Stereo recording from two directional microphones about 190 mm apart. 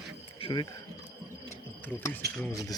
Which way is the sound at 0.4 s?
20° left (ahead or behind).